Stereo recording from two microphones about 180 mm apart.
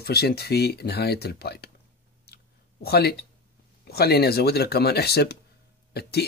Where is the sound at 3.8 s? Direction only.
60° left (ahead or behind).